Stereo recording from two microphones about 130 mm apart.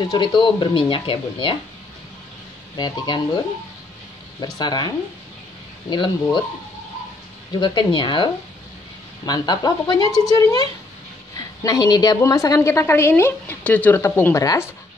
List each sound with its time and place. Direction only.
0.0 s speech: 35° left (ahead or behind)
2.7 s speech: 35° left (ahead or behind)
4.6 s speech: 35° left (ahead or behind)
7.5 s a woman's voice: 35° left (ahead or behind)